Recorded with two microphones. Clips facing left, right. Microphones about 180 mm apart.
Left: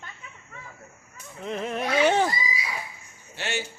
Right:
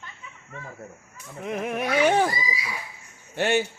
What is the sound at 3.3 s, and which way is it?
Speech, 55° right (ahead or behind).